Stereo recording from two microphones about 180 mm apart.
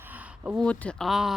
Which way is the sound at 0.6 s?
5° left (ahead or behind).